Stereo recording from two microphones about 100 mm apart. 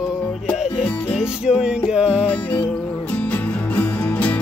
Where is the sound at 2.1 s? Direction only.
10° left (ahead or behind).